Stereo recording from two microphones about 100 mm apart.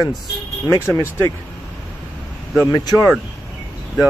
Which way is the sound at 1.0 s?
25° left (ahead or behind).